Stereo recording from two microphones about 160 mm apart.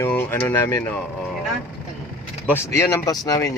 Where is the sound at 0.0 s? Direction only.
15° left (ahead or behind).